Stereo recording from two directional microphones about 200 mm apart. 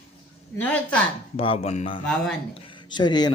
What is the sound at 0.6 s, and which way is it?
Speech, 5° left (ahead or behind).